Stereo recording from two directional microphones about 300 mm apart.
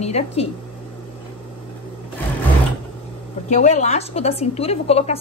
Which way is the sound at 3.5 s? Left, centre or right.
Left.